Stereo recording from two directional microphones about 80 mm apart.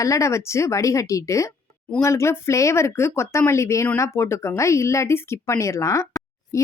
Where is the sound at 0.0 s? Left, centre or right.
Left.